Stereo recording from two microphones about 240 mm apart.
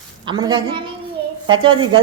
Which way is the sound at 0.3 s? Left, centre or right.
Centre.